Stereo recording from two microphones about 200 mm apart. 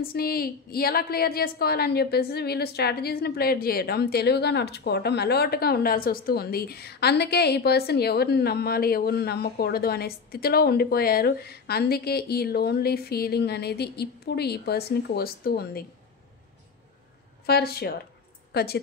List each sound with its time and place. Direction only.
0.0 s a woman's voice: 50° left (ahead or behind)
17.5 s a woman's voice: 50° left (ahead or behind)